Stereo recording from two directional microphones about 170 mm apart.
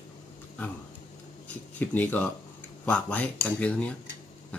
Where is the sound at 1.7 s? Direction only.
10° left (ahead or behind).